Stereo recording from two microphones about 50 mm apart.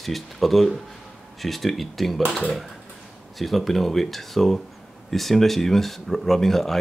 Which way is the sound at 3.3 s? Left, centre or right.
Centre.